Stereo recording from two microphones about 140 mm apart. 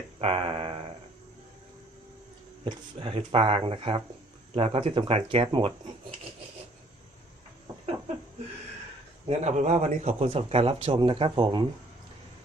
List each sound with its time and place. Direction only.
0.2 s a sound: 45° right (ahead or behind)
2.6 s speech: 45° right (ahead or behind)
9.2 s speech: 55° right (ahead or behind); by 11.6 s 35° right (ahead or behind)